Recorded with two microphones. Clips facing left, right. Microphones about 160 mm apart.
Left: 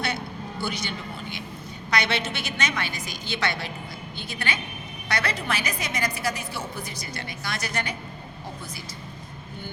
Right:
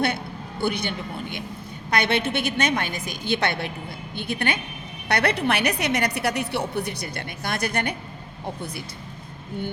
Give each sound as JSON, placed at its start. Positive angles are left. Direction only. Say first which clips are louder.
{"t": 0.6, "sound": "a woman's voice", "louder": "right 6 dB", "side_deg": -55}